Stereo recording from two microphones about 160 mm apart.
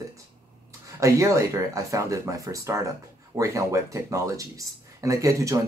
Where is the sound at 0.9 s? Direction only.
20° right (ahead or behind).